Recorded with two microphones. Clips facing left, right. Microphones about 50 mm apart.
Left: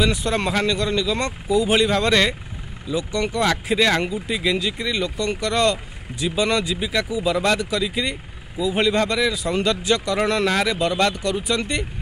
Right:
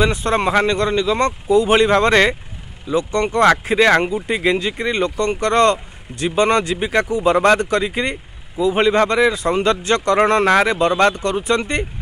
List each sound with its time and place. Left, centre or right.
0.0 s speech: right